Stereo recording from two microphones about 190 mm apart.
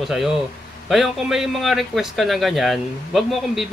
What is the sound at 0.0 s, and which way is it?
A man's voice, centre (ahead or behind).